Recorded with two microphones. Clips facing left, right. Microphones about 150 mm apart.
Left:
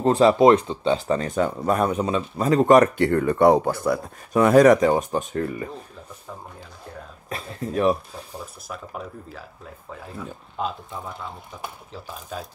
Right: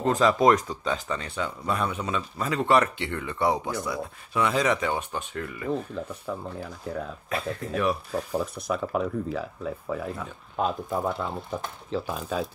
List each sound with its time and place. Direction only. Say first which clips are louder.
0.0 s speech: left 5 dB; 35° left (ahead or behind)
7.2 s speech: left 2 dB; 35° left (ahead or behind)
8.1 s speech: right 9 dB; 85° right
10.6 s speech: right 4 dB; 45° right (ahead or behind)
11.1 s speech: right 7 dB; 60° right (ahead or behind)